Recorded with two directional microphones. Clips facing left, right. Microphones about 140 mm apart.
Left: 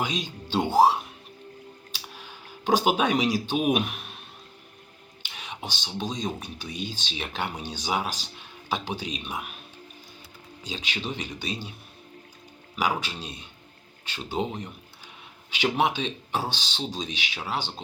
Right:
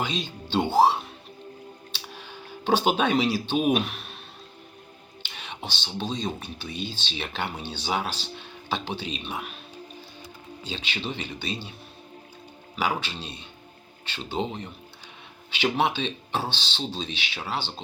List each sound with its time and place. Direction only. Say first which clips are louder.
0.0 s speech: even; 10° left (ahead or behind)
2.1 s a sound: right 4 dB; 10° left (ahead or behind)
3.5 s speech: right 1 dB; 10° left (ahead or behind)
5.3 s whispering: even; 10° left (ahead or behind)
6.0 s speech: right 1 dB; 10° left (ahead or behind)
10.7 s speech: even; 10° left (ahead or behind)
12.7 s speech: even; 10° left (ahead or behind)